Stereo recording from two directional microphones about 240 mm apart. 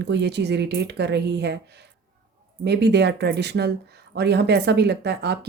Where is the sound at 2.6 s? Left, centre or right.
Right.